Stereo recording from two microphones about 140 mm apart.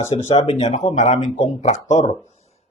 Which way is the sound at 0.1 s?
50° left (ahead or behind).